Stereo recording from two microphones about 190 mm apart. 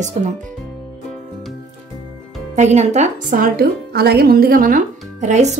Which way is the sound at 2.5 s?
35° right (ahead or behind).